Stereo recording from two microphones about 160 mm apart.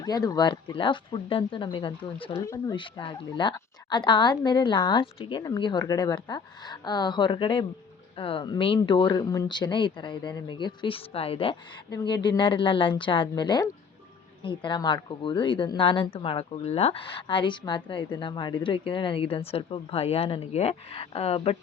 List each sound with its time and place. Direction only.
0.0 s a woman's voice: 25° left (ahead or behind)
11.9 s a woman's voice: 25° left (ahead or behind)